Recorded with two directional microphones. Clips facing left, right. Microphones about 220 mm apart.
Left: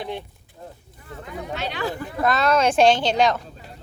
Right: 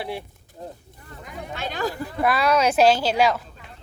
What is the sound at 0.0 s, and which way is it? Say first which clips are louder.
Speech: even; 10° right (ahead or behind).